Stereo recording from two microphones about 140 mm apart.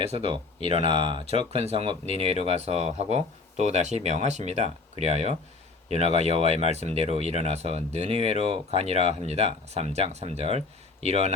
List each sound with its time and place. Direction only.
0.7 s speech: 40° right (ahead or behind)